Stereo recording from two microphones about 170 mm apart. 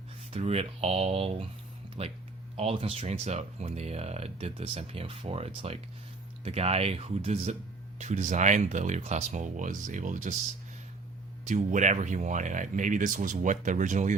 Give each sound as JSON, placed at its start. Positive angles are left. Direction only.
{"t": 0.3, "sound": "speech", "side_deg": -35}
{"t": 11.4, "sound": "speech", "side_deg": -45}